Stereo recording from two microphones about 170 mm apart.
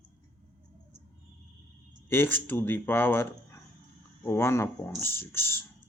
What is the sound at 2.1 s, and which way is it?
Speech, 10° left (ahead or behind).